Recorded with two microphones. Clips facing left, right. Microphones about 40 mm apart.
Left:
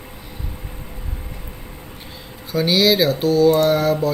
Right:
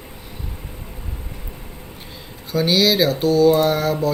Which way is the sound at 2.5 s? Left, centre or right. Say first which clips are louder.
Left 1 dB; centre.